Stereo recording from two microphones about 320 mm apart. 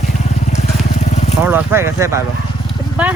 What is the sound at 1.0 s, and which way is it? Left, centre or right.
Vehicle, left.